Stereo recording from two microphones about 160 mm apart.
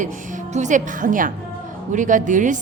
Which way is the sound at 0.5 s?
50° right (ahead or behind).